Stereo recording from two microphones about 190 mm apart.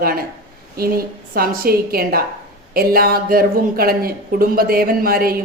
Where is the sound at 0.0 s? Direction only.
50° right (ahead or behind).